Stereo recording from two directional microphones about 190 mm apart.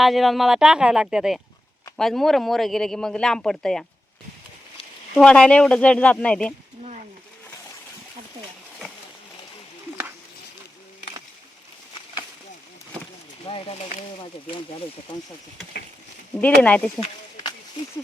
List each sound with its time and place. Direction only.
0.0 s speech: centre (ahead or behind)
5.1 s speech: 5° left (ahead or behind)
13.4 s speech: 30° left (ahead or behind)
16.4 s speech: 5° left (ahead or behind)
17.0 s a sound: 20° left (ahead or behind)